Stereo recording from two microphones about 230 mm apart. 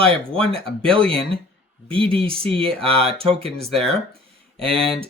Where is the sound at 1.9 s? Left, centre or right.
Right.